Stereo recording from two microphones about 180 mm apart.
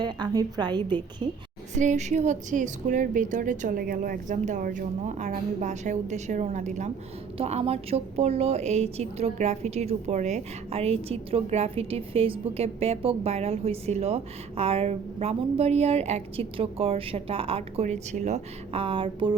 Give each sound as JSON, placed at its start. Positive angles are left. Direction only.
{"t": 0.0, "sound": "a woman's voice", "side_deg": -25}
{"t": 1.7, "sound": "a woman's voice", "side_deg": -40}